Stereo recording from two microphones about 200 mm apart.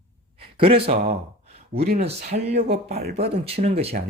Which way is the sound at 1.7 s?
50° right (ahead or behind).